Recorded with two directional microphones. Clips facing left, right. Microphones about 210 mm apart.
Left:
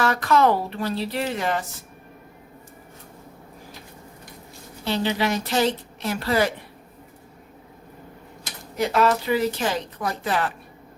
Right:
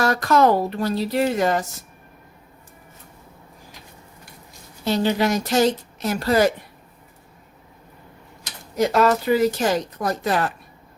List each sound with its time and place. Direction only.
0.0 s a woman's voice: 40° right (ahead or behind)
4.9 s a woman's voice: 45° right (ahead or behind)
8.7 s a woman's voice: 40° right (ahead or behind)